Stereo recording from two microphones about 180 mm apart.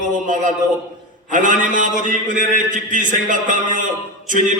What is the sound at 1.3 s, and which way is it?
A man's voice, 45° right (ahead or behind).